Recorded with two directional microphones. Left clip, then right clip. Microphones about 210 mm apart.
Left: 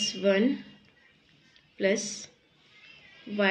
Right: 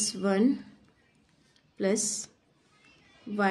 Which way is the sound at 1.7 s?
65° right (ahead or behind).